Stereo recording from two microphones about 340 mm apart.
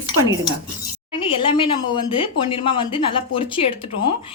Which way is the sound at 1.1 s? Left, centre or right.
Centre.